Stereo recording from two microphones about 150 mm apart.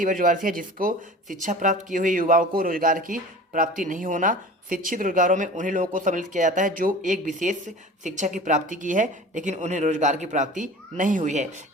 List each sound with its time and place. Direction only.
0.0 s speech: 65° right (ahead or behind)